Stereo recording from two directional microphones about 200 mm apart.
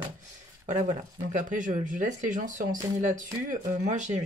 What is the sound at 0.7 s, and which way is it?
Speech, 35° right (ahead or behind).